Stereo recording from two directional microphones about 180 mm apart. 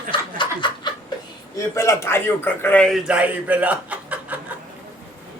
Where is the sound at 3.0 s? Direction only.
5° right (ahead or behind).